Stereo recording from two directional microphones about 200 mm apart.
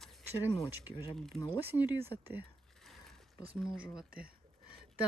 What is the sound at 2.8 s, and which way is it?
Mechanisms, centre (ahead or behind).